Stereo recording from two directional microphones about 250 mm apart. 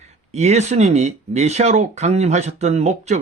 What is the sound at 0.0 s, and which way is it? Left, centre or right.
Speech, right.